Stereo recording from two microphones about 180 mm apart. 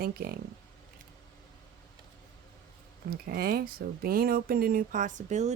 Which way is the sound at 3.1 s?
55° right (ahead or behind).